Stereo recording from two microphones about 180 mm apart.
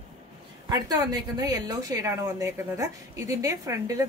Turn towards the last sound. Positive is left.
turn(degrees=-20)  # may be behind; listen again after turning